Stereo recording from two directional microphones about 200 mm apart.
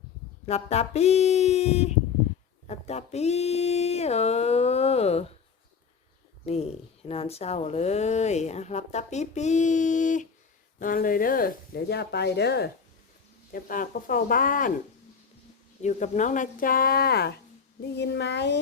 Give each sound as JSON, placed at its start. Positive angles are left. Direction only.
{"t": 0.4, "sound": "speech", "side_deg": 30}
{"t": 6.4, "sound": "speech", "side_deg": 30}
{"t": 15.8, "sound": "a child's voice", "side_deg": 35}